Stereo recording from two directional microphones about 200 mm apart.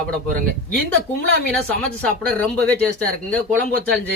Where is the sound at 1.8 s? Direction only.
5° left (ahead or behind).